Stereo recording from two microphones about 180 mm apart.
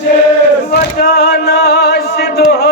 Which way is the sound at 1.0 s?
65° left (ahead or behind).